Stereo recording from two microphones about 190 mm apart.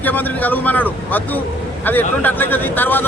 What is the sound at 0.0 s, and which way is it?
Speech, 10° left (ahead or behind).